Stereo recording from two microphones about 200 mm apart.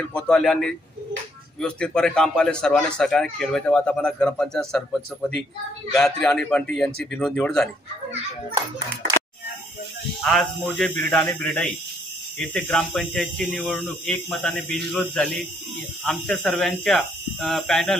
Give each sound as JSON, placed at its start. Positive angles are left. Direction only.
{"t": 0.1, "sound": "speech", "side_deg": 5}
{"t": 10.2, "sound": "speech", "side_deg": 0}